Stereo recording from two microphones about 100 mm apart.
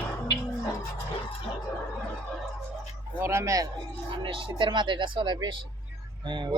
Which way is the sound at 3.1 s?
30° right (ahead or behind).